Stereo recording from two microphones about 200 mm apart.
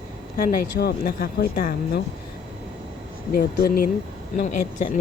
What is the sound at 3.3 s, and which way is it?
Speech, 50° left (ahead or behind).